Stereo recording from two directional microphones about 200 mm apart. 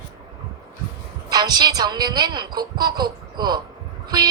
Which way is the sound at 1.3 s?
20° right (ahead or behind).